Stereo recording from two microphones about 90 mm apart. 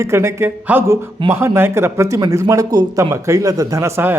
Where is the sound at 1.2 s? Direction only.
30° right (ahead or behind).